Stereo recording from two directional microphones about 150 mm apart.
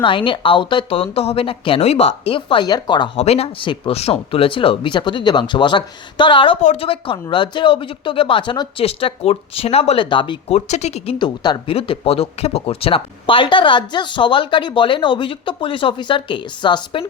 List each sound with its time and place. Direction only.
0.0 s speech: 35° left (ahead or behind)
3.2 s speech: 45° left (ahead or behind)
10.5 s speech: 50° left (ahead or behind); by 17.1 s 35° left (ahead or behind)